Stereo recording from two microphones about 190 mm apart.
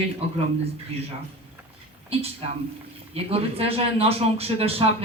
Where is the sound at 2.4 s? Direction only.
30° right (ahead or behind).